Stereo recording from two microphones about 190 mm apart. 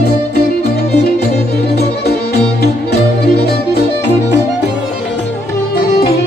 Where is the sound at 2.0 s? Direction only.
60° left (ahead or behind).